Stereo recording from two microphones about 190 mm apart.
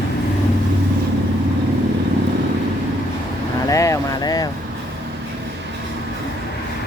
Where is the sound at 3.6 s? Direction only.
15° left (ahead or behind).